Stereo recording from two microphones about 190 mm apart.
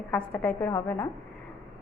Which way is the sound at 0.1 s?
10° left (ahead or behind).